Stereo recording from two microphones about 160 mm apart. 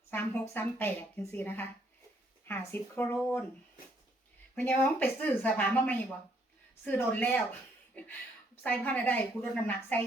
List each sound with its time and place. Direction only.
0.1 s a woman's voice: 10° left (ahead or behind)
4.5 s speech: 15° left (ahead or behind)